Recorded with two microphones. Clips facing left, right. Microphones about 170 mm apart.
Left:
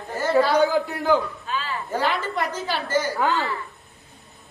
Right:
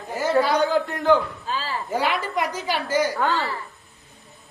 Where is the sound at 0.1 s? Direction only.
10° right (ahead or behind).